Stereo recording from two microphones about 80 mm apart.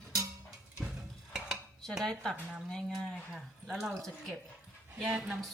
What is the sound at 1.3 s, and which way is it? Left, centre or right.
Cutlery, centre.